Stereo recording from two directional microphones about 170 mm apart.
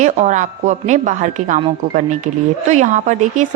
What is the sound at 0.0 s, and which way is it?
A woman's voice, 45° right (ahead or behind).